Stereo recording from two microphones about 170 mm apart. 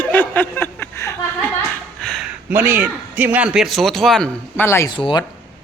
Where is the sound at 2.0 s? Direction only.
5° left (ahead or behind).